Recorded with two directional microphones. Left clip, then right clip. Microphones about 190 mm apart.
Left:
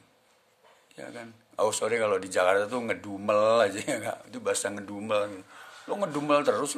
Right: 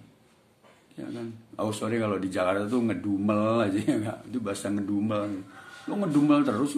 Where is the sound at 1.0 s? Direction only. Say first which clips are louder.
Right 3 dB; 45° left (ahead or behind).